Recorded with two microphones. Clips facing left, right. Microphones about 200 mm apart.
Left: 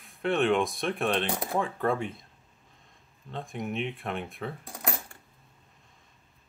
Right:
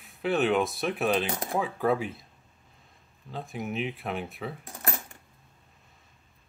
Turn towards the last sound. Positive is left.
turn(degrees=-5)  # may be behind; listen again after turning